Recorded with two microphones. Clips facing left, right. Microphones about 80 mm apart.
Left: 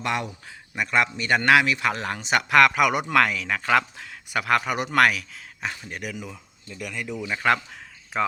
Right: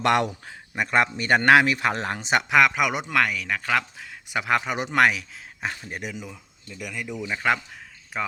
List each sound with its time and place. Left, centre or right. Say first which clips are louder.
0.0 s speech: right 6 dB; right
0.4 s a man's voice: right 1 dB; right
2.5 s speech: left 3 dB; centre
3.1 s speech: left 2 dB; centre
6.3 s speech: left 1 dB; centre